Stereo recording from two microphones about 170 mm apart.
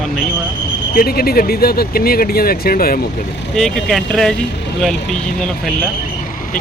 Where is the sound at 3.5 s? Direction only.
Centre (ahead or behind).